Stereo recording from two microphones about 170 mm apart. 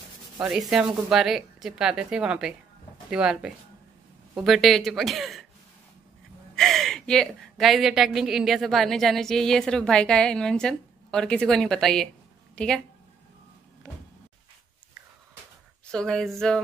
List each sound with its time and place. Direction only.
0.4 s a woman's voice: 5° right (ahead or behind)
6.5 s a woman's voice: centre (ahead or behind)
15.9 s a woman's voice: 5° left (ahead or behind)